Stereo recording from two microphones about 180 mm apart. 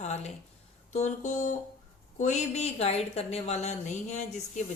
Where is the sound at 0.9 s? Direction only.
40° left (ahead or behind).